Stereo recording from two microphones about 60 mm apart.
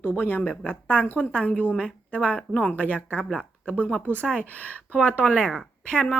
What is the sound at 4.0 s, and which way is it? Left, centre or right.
Speech, right.